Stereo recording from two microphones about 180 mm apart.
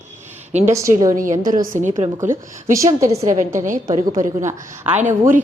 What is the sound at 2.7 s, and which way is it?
Speech, 15° right (ahead or behind).